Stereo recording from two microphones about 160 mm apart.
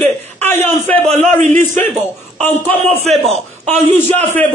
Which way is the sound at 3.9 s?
10° left (ahead or behind).